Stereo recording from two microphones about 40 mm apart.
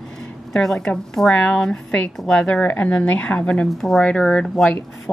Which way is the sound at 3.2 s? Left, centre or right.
Left.